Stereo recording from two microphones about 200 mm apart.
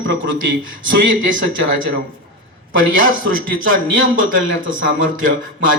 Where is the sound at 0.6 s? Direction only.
40° right (ahead or behind).